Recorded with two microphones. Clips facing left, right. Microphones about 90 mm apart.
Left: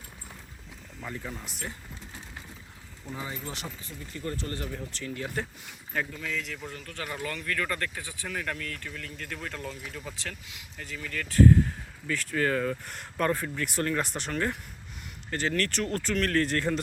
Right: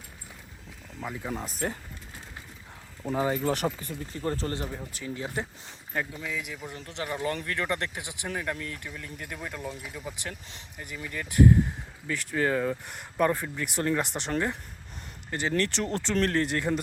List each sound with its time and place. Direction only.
1.0 s speech: 10° right (ahead or behind)
1.3 s speech: 40° right (ahead or behind)
3.0 s speech: 85° right
3.2 s speech: 55° right (ahead or behind)
4.1 s speech: 30° right (ahead or behind)
4.9 s speech: 10° right (ahead or behind)
6.7 s speech: 25° right (ahead or behind)